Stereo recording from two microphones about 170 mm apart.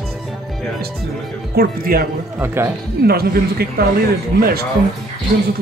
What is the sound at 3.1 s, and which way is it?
Speech, 65° right (ahead or behind).